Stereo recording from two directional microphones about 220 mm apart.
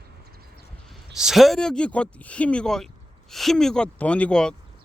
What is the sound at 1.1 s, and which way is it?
A man's voice, centre (ahead or behind).